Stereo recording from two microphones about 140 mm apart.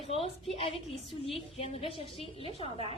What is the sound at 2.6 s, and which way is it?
Speech, 40° right (ahead or behind).